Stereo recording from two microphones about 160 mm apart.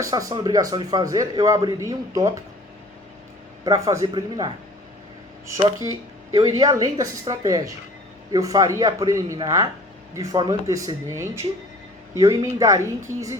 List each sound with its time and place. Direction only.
0.0 s a man's voice: 20° right (ahead or behind)
3.6 s a man's voice: 20° right (ahead or behind)